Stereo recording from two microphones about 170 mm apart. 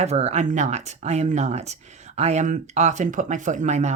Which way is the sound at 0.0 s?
40° right (ahead or behind).